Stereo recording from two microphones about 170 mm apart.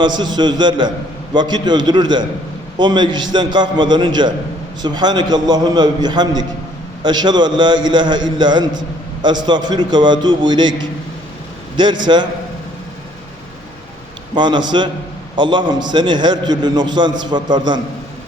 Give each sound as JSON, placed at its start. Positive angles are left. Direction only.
{"t": 0.0, "sound": "a man's voice", "side_deg": -25}
{"t": 11.8, "sound": "a man's voice", "side_deg": -25}
{"t": 14.3, "sound": "a man's voice", "side_deg": -25}